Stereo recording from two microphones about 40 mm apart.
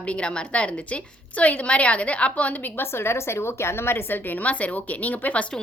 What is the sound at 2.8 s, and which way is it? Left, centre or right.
A woman's voice, left.